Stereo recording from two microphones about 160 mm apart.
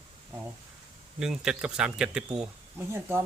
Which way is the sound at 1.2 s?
5° right (ahead or behind).